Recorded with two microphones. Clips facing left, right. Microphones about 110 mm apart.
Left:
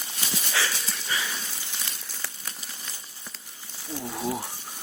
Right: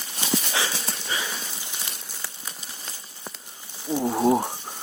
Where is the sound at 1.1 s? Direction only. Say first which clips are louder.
Even; 25° right (ahead or behind).